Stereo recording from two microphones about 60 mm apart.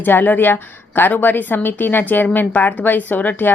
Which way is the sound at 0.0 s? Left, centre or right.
Left.